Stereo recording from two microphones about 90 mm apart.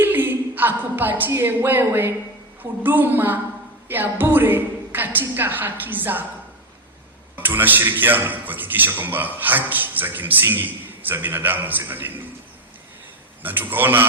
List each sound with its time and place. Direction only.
0.0 s a sound: 20° right (ahead or behind)
2.8 s a man's voice: 20° right (ahead or behind)
7.3 s a man's voice: 20° right (ahead or behind)
13.4 s a man's voice: 20° right (ahead or behind)